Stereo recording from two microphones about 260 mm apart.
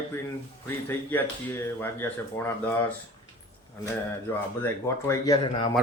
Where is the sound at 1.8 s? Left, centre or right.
Centre.